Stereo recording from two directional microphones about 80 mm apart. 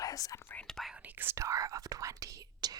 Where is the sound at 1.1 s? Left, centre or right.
Right.